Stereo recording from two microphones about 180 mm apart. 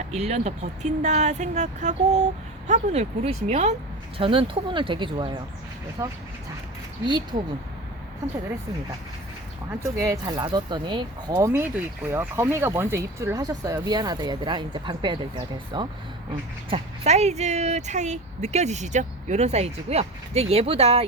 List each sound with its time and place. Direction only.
0.1 s speech: 35° right (ahead or behind)
6.0 s speech: 15° right (ahead or behind)
9.8 s speech: 15° right (ahead or behind); by 21.0 s 35° right (ahead or behind)